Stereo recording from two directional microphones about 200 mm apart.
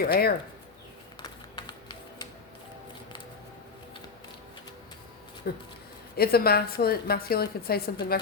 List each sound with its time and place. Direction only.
0.0 s a woman's voice: 50° left (ahead or behind)
1.2 s a sound: 20° left (ahead or behind)
5.5 s a woman's voice: 50° left (ahead or behind)